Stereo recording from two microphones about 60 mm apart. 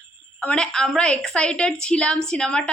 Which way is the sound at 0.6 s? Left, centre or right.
Centre.